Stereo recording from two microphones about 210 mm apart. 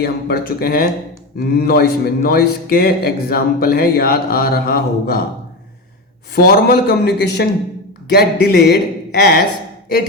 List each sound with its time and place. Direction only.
0.0 s speech: 45° left (ahead or behind)
6.3 s speech: 45° left (ahead or behind)